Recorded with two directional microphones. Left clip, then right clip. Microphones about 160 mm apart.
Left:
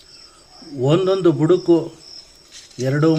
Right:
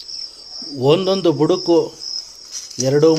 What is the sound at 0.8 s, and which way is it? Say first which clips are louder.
Speech: right 2 dB; 40° right (ahead or behind).